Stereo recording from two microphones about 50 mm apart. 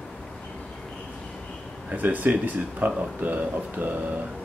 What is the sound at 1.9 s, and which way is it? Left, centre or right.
Speech, right.